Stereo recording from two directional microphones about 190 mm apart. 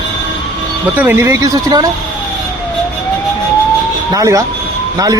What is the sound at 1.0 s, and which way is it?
Speech, 10° right (ahead or behind).